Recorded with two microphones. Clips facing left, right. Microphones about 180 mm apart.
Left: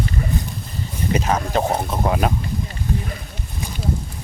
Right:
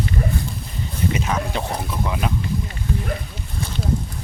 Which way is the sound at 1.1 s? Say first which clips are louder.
Left 4 dB; 40° left (ahead or behind).